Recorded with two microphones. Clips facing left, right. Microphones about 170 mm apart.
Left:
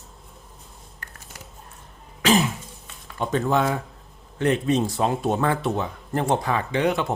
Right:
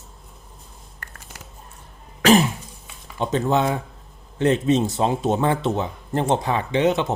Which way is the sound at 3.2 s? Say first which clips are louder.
Right 1 dB; 25° right (ahead or behind).